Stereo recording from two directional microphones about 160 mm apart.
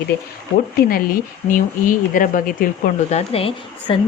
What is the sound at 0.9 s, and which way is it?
A woman's voice, 65° left (ahead or behind).